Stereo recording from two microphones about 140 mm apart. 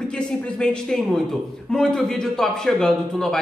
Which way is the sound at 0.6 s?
5° left (ahead or behind).